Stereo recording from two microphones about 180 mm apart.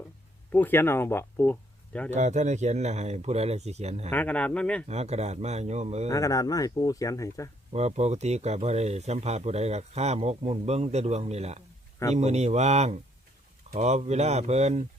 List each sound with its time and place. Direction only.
0.5 s speech: 10° left (ahead or behind)
2.0 s speech: 40° right (ahead or behind)
4.1 s speech: 10° left (ahead or behind)
4.9 s speech: 35° right (ahead or behind)
6.1 s speech: 20° left (ahead or behind)
7.7 s speech: 35° right (ahead or behind)